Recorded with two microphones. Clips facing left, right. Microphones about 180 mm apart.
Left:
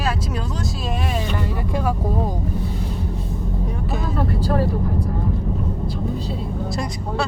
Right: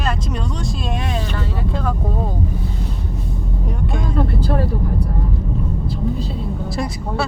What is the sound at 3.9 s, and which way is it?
Vehicle, 5° left (ahead or behind).